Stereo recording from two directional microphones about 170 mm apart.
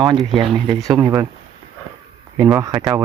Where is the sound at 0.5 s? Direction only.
25° right (ahead or behind).